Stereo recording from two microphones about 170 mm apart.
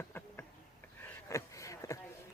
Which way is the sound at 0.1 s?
15° left (ahead or behind).